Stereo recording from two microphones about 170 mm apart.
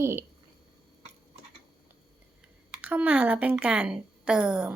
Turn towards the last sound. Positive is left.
turn(degrees=-5)  # may be behind; listen again after turning